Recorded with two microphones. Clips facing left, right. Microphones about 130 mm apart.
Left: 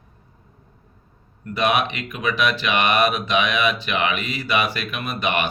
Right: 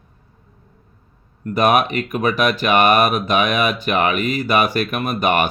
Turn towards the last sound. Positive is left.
turn(degrees=-45)  # may be behind; listen again after turning